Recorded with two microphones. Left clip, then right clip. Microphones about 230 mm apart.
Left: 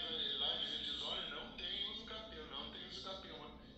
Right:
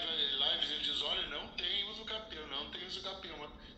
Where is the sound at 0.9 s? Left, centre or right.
Right.